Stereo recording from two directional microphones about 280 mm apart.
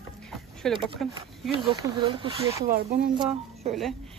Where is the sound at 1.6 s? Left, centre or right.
Centre.